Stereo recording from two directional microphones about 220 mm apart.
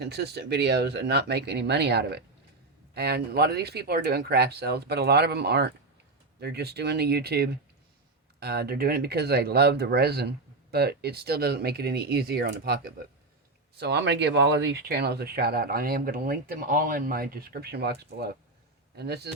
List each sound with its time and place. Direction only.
0.0 s speech: 50° right (ahead or behind)